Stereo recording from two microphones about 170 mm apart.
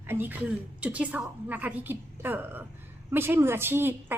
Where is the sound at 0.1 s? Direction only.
10° right (ahead or behind).